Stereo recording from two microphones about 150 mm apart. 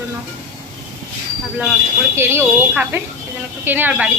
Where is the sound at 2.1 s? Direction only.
15° right (ahead or behind).